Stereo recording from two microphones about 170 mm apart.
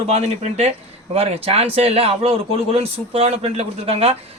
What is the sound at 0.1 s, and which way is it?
Speech, 35° right (ahead or behind).